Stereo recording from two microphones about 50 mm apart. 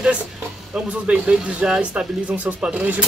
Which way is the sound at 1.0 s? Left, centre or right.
Right.